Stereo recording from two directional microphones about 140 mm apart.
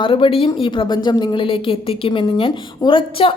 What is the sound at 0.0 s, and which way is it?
A woman's voice, 40° left (ahead or behind).